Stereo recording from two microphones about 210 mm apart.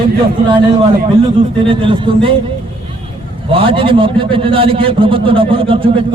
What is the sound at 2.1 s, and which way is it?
Speech, 25° right (ahead or behind).